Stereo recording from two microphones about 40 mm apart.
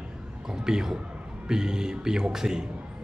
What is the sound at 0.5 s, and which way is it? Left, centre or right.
A man's voice, centre.